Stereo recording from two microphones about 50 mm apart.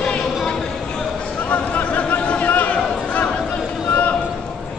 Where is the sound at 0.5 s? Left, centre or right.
Left.